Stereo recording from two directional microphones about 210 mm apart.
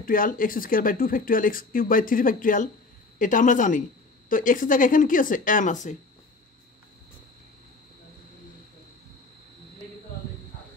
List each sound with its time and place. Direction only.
0.0 s speech: 40° left (ahead or behind)